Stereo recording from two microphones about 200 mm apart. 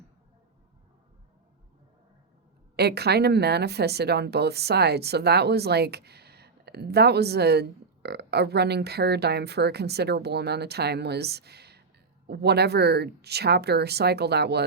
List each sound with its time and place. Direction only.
2.7 s speech: 55° right (ahead or behind)